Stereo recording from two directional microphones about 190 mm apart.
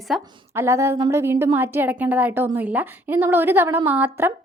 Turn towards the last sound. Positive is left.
turn(degrees=-10)  # may be behind; listen again after turning